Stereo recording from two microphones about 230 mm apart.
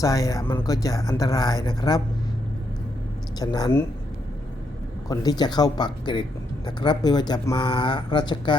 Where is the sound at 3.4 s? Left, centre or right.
Centre.